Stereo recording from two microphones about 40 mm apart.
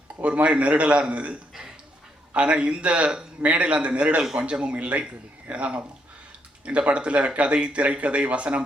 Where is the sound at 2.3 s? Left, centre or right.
Right.